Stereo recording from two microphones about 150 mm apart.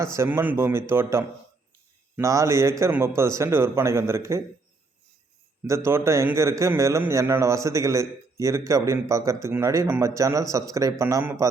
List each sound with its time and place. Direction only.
0.0 s a man's voice: 20° right (ahead or behind)
5.6 s a man's voice: 20° right (ahead or behind)